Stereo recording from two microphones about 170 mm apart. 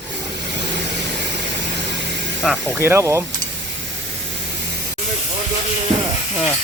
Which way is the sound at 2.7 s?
15° right (ahead or behind).